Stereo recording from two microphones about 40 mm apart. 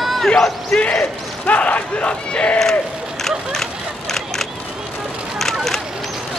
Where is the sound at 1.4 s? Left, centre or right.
Left.